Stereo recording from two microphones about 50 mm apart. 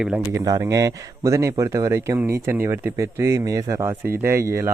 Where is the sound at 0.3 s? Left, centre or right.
Right.